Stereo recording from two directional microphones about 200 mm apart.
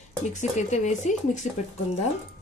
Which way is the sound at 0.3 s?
35° left (ahead or behind).